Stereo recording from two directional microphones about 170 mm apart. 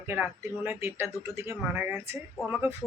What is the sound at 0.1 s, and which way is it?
Speech, 15° right (ahead or behind).